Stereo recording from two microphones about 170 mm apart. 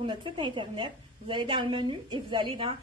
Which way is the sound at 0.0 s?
30° right (ahead or behind).